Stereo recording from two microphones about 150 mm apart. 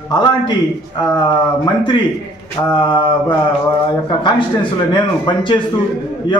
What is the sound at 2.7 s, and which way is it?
A man's voice, 30° left (ahead or behind).